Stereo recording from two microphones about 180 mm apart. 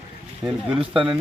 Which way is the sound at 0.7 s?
30° right (ahead or behind).